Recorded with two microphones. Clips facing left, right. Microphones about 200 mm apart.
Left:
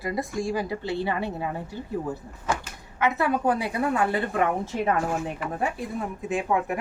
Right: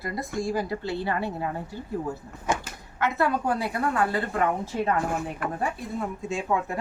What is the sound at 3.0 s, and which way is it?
A woman's voice, 15° left (ahead or behind).